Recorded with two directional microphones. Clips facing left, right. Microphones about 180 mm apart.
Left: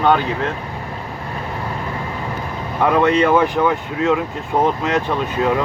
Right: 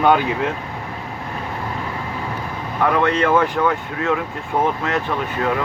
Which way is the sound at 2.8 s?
20° left (ahead or behind).